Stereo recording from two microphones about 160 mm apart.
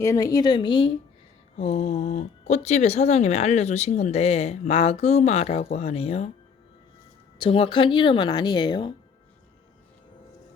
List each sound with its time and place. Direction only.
0.0 s speech: 20° left (ahead or behind)
1.5 s speech: 40° left (ahead or behind)
7.3 s speech: 30° left (ahead or behind)